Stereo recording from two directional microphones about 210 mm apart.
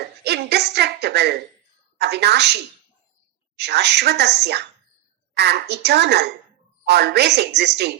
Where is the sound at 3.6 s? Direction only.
50° right (ahead or behind).